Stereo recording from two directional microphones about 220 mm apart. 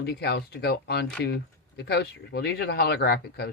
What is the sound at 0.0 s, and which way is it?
Speech, 50° left (ahead or behind).